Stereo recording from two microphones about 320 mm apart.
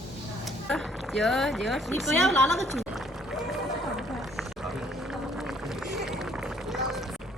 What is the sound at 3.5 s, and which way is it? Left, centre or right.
Run, centre.